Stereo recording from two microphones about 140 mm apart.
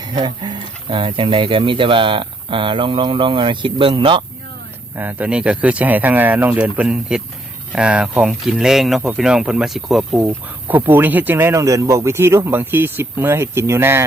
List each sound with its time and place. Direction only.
0.0 s speech: 30° right (ahead or behind)
4.9 s speech: 15° right (ahead or behind)